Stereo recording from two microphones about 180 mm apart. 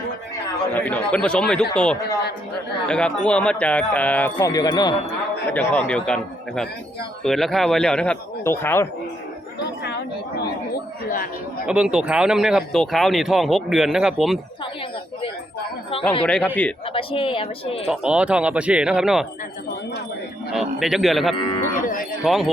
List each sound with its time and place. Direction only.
0.7 s speech: 10° left (ahead or behind)
5.5 s speech: 10° left (ahead or behind)
9.6 s chatter: 65° left (ahead or behind)
11.6 s speech: 5° right (ahead or behind)
16.2 s speech: 5° left (ahead or behind)
16.9 s speech: 30° left (ahead or behind)
17.8 s speech: 5° right (ahead or behind)
20.5 s speech: centre (ahead or behind)